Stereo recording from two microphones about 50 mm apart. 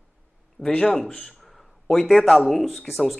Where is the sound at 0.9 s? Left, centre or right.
Centre.